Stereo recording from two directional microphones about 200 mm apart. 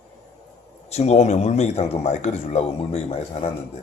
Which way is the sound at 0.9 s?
35° left (ahead or behind).